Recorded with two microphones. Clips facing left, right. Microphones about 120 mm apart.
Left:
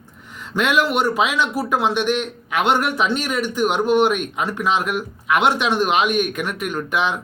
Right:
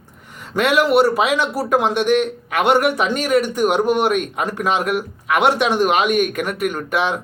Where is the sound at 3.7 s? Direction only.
10° right (ahead or behind).